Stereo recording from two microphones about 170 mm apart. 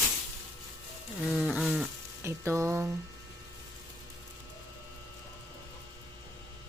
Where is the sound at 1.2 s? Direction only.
Centre (ahead or behind).